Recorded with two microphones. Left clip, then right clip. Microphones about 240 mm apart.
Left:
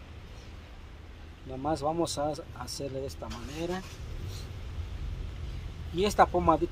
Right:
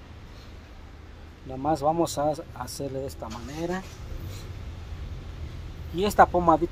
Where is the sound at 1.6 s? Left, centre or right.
Centre.